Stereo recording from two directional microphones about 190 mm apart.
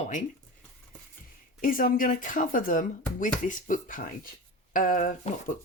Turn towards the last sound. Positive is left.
turn(degrees=45)  # may be behind; listen again after turning